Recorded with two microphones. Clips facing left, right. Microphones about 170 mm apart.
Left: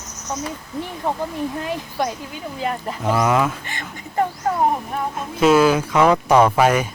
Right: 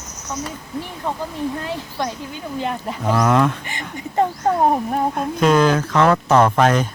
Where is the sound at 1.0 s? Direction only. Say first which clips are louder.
Left 1 dB; 20° left (ahead or behind).